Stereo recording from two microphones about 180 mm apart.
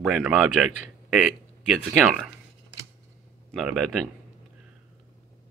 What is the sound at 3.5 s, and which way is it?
Speech, centre (ahead or behind).